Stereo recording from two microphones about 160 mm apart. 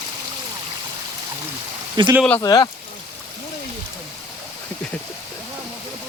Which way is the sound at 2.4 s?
25° left (ahead or behind).